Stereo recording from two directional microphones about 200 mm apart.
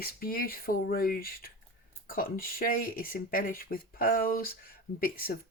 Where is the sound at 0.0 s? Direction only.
50° left (ahead or behind).